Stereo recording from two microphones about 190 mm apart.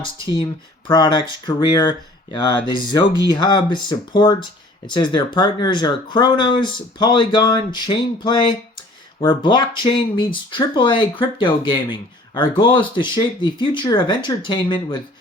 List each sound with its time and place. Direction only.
0.9 s speech: 25° left (ahead or behind)